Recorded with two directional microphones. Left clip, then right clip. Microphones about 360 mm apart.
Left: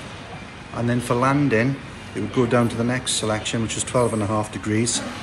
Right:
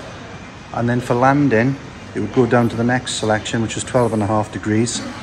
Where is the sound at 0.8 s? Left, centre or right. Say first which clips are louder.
Right 5 dB; right.